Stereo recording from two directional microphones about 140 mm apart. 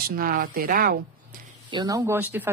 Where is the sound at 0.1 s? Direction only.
90° right.